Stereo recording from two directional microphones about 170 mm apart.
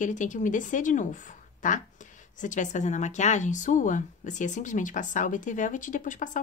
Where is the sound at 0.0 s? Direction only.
50° left (ahead or behind).